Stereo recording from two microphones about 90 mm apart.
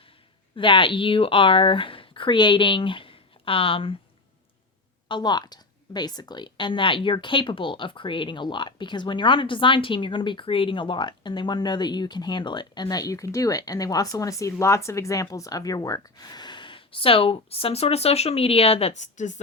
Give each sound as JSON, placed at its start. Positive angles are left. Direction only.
{"t": 0.5, "sound": "speech", "side_deg": 70}
{"t": 5.0, "sound": "a woman's voice", "side_deg": 55}